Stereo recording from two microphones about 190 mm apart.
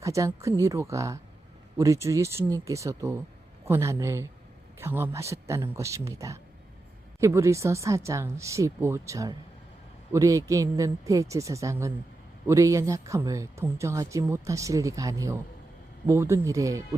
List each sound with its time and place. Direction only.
0.0 s a woman's voice: 15° right (ahead or behind)